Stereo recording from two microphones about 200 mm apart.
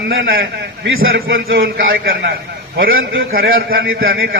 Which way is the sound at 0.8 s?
85° right.